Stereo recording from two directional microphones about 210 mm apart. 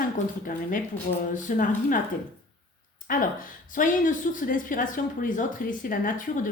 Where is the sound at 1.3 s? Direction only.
40° left (ahead or behind).